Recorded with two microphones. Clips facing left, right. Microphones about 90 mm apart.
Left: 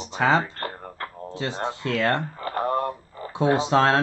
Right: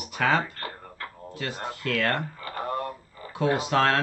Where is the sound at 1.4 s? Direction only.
25° left (ahead or behind).